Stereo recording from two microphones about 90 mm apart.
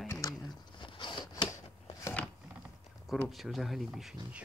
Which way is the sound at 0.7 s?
60° left (ahead or behind).